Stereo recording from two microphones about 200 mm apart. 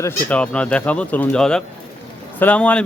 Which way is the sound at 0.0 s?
10° left (ahead or behind).